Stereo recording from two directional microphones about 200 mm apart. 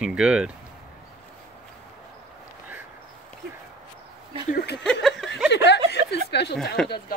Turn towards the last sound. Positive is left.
turn(degrees=5)  # may be behind; listen again after turning